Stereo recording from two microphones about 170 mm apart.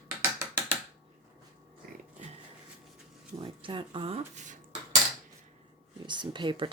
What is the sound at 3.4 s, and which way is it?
Speech, 30° right (ahead or behind).